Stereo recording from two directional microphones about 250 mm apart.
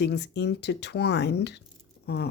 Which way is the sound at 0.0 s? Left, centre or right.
Left.